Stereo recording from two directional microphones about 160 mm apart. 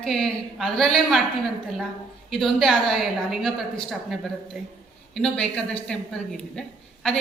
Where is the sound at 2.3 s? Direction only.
Centre (ahead or behind).